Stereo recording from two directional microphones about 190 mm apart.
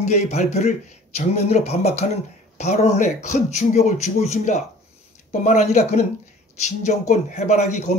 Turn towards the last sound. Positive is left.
turn(degrees=40)  # may be behind; listen again after turning